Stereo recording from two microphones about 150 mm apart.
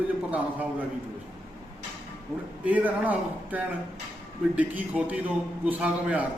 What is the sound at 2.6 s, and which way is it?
A man's voice, 10° right (ahead or behind).